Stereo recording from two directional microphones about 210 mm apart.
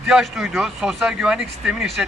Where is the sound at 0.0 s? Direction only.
Centre (ahead or behind).